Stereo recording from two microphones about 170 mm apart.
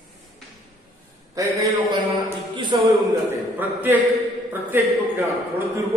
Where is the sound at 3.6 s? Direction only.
10° right (ahead or behind).